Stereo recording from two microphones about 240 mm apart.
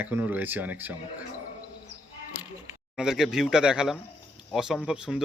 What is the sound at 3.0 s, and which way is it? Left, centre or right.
Speech, centre.